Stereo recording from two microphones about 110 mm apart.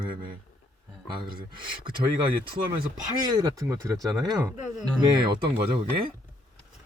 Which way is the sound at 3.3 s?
35° right (ahead or behind).